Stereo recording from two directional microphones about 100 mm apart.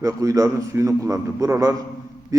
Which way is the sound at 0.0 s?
35° right (ahead or behind).